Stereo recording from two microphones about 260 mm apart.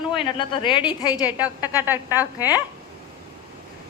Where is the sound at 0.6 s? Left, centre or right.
Centre.